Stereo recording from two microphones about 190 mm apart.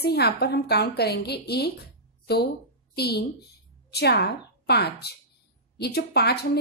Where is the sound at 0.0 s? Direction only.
60° left (ahead or behind).